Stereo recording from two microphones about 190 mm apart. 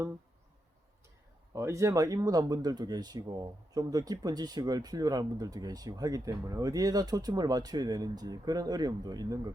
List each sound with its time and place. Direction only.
1.5 s speech: 15° right (ahead or behind)